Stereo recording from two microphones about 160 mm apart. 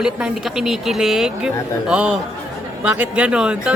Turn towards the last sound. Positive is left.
turn(degrees=-5)  # may be behind; listen again after turning